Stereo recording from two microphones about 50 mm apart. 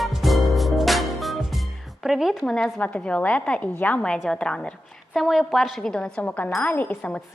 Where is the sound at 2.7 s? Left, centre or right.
Left.